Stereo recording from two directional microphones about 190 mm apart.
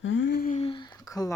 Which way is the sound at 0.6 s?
25° left (ahead or behind).